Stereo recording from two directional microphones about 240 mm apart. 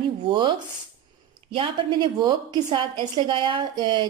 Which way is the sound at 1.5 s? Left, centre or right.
Right.